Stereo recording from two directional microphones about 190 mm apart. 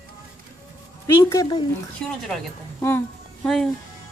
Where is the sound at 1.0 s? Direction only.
15° left (ahead or behind).